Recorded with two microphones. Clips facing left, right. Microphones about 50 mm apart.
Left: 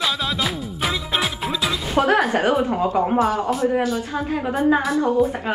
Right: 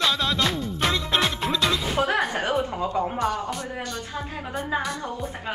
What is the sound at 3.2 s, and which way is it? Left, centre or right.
Speech, centre.